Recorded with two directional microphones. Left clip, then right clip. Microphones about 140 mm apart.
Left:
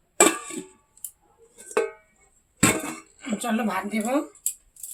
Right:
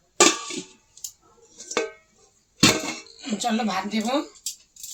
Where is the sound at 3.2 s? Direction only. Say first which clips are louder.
Right 1 dB; 5° right (ahead or behind).